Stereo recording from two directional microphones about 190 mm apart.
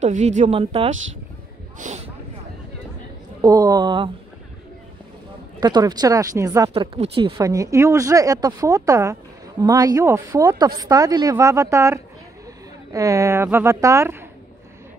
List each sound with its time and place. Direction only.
0.0 s speech: 40° right (ahead or behind)
1.8 s speech: 40° right (ahead or behind)
3.3 s speech: 20° right (ahead or behind)
5.6 s speech: 20° right (ahead or behind)
6.7 s speech: 30° right (ahead or behind)